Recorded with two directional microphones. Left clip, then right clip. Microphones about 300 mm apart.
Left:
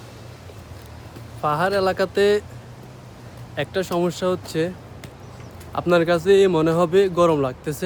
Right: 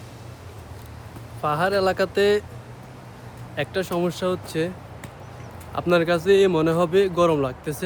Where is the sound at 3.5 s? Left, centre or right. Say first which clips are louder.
Left 2 dB; centre.